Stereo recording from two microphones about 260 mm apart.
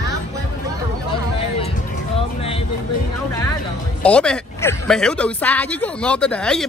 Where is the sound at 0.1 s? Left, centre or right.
Centre.